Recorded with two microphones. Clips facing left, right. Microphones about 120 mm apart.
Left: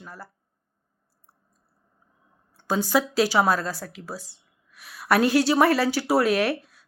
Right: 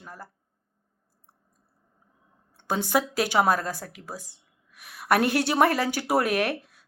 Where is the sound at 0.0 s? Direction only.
45° right (ahead or behind).